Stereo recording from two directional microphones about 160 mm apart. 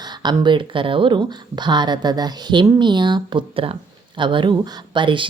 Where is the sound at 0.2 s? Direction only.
30° right (ahead or behind).